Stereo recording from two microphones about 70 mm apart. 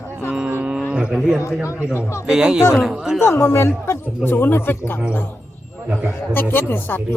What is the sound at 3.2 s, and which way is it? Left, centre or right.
Speech, left.